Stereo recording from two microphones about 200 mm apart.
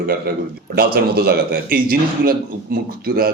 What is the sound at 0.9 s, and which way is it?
Speech, 50° right (ahead or behind).